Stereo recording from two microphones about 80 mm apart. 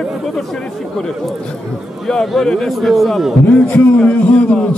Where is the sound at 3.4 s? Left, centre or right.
Centre.